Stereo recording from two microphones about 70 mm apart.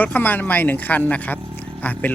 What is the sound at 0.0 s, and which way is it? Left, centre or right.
Speech, left.